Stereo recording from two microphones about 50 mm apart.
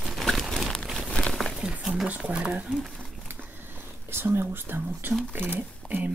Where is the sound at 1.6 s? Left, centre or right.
Centre.